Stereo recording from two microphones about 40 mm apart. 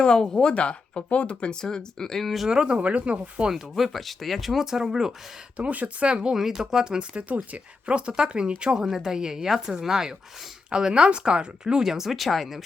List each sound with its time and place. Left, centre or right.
0.0 s speech: centre
1.6 s speech: centre
2.5 s speech: right
2.7 s speech: right
3.5 s speech: centre
5.5 s speech: right
6.1 s speech: right
6.3 s speech: centre
7.1 s speech: right
7.3 s speech: right; by 12.6 s centre